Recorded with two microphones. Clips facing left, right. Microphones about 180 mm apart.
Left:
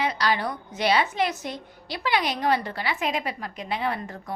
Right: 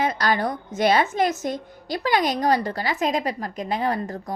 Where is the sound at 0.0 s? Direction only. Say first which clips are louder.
Right 3 dB; 45° right (ahead or behind).